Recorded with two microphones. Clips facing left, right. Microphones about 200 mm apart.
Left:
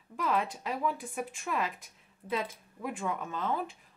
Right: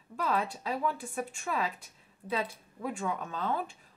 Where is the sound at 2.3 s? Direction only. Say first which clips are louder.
Even; 10° left (ahead or behind).